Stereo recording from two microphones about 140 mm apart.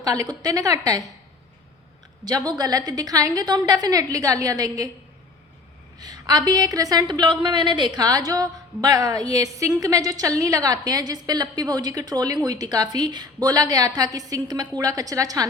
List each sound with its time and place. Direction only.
0.0 s a woman's voice: 25° right (ahead or behind)
2.2 s a woman's voice: 30° right (ahead or behind)
6.0 s a woman's voice: 30° right (ahead or behind)